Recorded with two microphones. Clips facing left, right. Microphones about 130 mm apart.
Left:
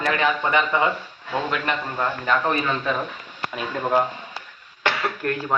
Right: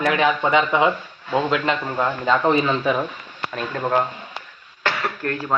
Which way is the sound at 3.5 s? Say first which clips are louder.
Even; 10° left (ahead or behind).